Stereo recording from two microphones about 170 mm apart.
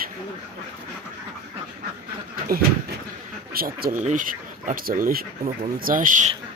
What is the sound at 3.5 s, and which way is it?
Speech, 60° right (ahead or behind).